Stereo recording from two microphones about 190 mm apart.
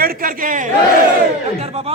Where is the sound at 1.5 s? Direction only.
35° right (ahead or behind).